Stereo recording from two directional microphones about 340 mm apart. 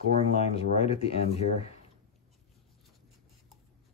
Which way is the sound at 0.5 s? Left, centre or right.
Centre.